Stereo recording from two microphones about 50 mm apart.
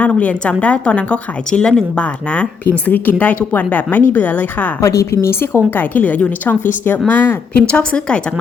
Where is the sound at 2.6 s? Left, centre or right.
Left.